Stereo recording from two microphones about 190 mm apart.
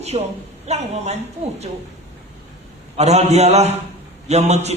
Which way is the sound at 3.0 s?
35° right (ahead or behind).